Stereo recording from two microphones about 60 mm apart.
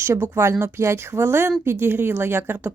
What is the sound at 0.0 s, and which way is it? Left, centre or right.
A woman's voice, right.